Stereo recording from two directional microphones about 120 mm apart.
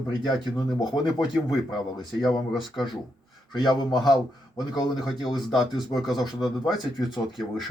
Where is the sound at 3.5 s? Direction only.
40° left (ahead or behind).